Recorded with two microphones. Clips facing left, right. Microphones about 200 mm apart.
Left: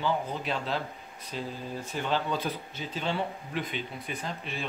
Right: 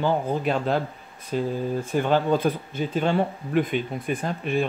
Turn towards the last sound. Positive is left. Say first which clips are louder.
# right 11 dB
turn(degrees=-50)  # may be behind; listen again after turning